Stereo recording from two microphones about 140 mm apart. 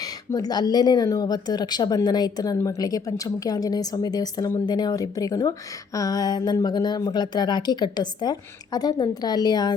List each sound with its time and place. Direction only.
0.0 s speech: 25° left (ahead or behind)